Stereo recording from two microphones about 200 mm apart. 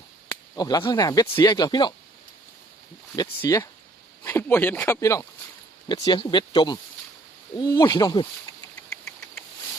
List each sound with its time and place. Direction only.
0.3 s speech: 20° left (ahead or behind)
3.2 s speech: 15° left (ahead or behind)